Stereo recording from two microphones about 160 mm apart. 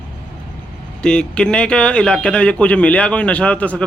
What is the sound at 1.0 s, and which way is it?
A man's voice, 5° left (ahead or behind).